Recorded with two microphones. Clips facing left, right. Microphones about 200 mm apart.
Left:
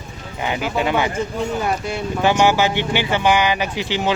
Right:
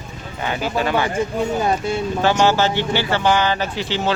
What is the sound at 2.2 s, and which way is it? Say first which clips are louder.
Speech: left 1 dB; 15° left (ahead or behind).